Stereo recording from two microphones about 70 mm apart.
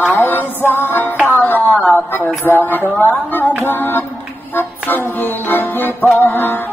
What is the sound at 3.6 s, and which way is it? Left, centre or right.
Music, left.